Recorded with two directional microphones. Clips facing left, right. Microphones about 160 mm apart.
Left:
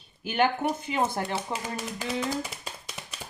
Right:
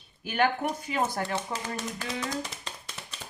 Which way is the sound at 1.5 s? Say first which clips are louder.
Left 1 dB; 10° left (ahead or behind).